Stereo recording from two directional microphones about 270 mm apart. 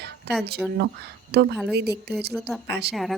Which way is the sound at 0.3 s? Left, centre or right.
Right.